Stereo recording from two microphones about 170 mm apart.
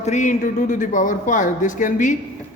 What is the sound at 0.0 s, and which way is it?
A man's voice, 45° left (ahead or behind).